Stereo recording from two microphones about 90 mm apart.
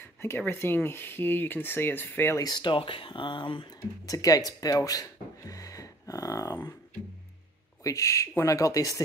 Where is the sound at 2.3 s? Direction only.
50° left (ahead or behind).